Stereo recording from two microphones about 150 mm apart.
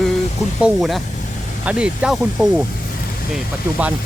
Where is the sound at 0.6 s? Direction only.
Centre (ahead or behind).